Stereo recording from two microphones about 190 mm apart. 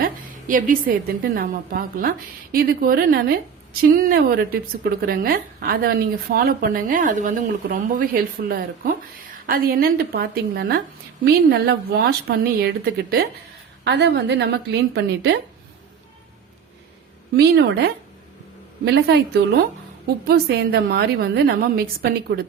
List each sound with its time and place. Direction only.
0.0 s a woman's voice: 45° right (ahead or behind); by 15.4 s 65° right (ahead or behind)
17.3 s a woman's voice: 60° right (ahead or behind)
20.2 s a woman's voice: 60° right (ahead or behind)